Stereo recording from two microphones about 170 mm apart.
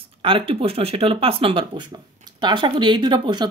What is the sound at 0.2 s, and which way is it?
Speech, 30° right (ahead or behind).